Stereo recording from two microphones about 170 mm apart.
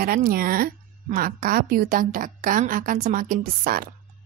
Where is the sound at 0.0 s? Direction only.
60° right (ahead or behind).